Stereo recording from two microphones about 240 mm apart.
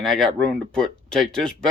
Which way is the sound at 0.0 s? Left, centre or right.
Centre.